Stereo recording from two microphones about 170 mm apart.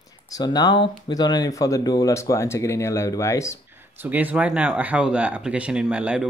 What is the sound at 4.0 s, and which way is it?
Speech, 10° right (ahead or behind).